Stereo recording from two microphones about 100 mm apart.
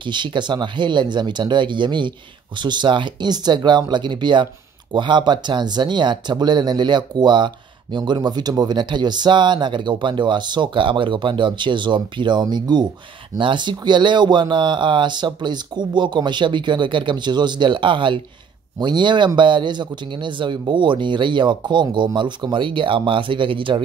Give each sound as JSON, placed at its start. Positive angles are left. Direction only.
{"t": 0.0, "sound": "speech", "side_deg": -50}